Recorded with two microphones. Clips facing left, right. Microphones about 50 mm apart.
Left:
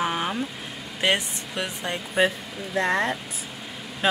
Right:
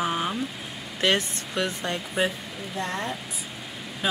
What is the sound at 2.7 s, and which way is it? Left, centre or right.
Speech, left.